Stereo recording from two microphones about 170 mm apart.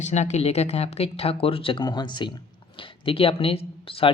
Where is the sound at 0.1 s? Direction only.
40° left (ahead or behind).